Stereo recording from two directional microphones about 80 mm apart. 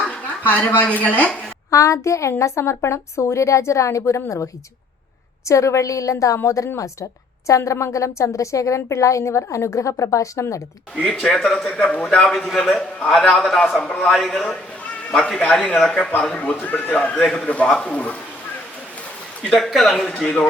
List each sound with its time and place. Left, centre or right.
0.4 s speech: left
1.7 s a woman's voice: left
5.5 s a woman's voice: left
11.0 s a man's voice: centre
15.1 s a man's voice: centre
19.4 s a man's voice: centre